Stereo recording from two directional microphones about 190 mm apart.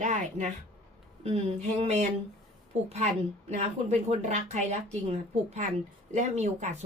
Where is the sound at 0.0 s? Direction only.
40° right (ahead or behind).